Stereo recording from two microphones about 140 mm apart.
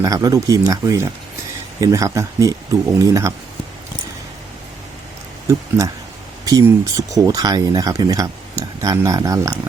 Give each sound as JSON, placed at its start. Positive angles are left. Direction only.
{"t": 0.0, "sound": "speech", "side_deg": -25}
{"t": 5.5, "sound": "speech", "side_deg": -20}